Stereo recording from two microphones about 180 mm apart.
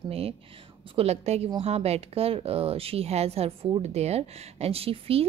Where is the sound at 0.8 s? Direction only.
35° right (ahead or behind).